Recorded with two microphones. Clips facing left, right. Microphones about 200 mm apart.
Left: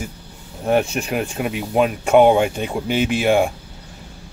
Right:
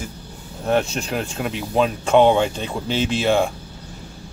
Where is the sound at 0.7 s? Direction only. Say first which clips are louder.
Left 2 dB; 15° left (ahead or behind).